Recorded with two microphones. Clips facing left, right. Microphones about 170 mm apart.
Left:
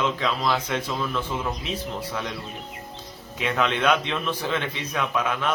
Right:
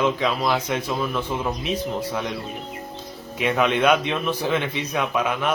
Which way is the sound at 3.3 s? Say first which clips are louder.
Right 4 dB; 15° right (ahead or behind).